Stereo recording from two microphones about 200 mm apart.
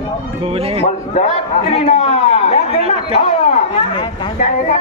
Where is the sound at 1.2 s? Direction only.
35° left (ahead or behind).